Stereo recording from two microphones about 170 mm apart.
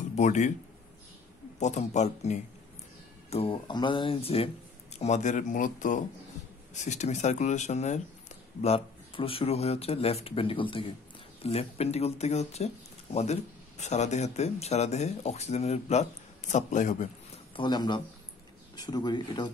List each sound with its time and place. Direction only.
0.1 s speech: 45° left (ahead or behind)
1.6 s speech: 40° left (ahead or behind)
17.6 s speech: 25° left (ahead or behind)